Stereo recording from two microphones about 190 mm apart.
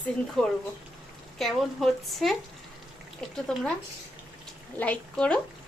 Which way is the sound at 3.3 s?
5° left (ahead or behind).